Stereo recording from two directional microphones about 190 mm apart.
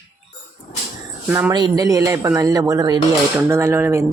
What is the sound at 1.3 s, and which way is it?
Speech, 10° right (ahead or behind).